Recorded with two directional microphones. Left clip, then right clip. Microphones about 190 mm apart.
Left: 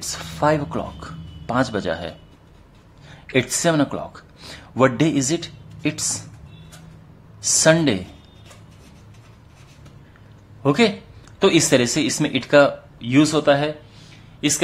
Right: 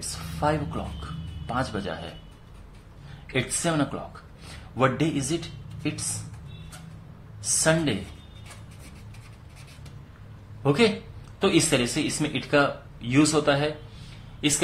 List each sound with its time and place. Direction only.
0.4 s speech: 40° left (ahead or behind)
7.6 s speech: 40° left (ahead or behind)
10.6 s speech: 30° left (ahead or behind)